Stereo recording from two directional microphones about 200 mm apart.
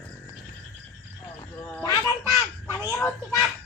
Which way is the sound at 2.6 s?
10° right (ahead or behind).